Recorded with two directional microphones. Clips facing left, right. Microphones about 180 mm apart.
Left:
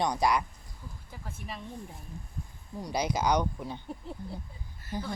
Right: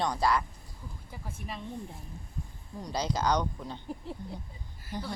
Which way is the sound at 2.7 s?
10° left (ahead or behind).